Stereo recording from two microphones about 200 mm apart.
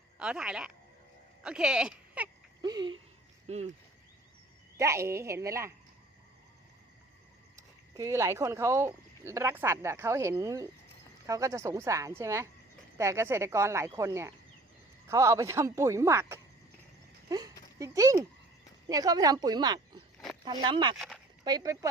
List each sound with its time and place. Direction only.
0.2 s speech: 5° right (ahead or behind)
2.6 s speech: 20° right (ahead or behind)
3.4 s speech: 35° right (ahead or behind)
4.8 s speech: 15° right (ahead or behind)
7.5 s speech: 15° right (ahead or behind)